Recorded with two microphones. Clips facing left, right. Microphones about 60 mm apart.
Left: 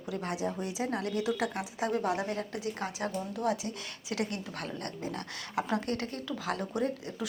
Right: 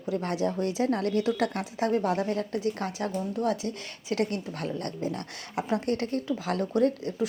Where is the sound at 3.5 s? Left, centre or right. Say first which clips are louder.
Right 3 dB; right.